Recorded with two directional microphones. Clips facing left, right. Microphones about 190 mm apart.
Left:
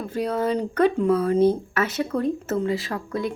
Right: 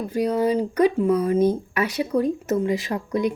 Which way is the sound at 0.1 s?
10° right (ahead or behind).